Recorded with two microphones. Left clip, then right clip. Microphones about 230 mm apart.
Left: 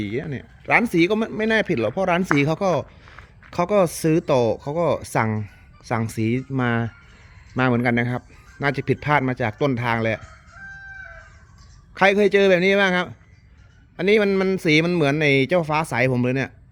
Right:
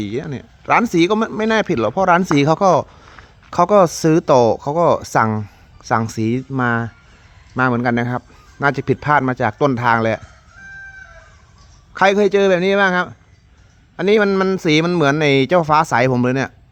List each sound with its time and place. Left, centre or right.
0.0 s speech: centre
11.9 s speech: centre